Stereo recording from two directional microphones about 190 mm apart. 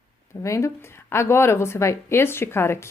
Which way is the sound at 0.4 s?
15° left (ahead or behind).